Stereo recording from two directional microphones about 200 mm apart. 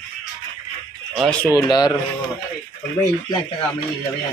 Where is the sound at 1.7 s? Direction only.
20° left (ahead or behind).